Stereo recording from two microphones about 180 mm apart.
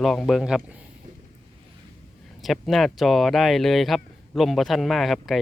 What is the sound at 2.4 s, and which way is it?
A man's voice, centre (ahead or behind).